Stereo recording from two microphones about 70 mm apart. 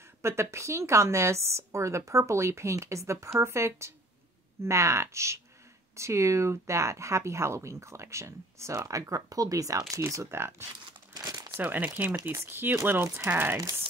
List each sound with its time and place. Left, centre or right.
0.2 s speech: right
11.1 s crumpling: right
11.6 s speech: right
13.3 s speech: right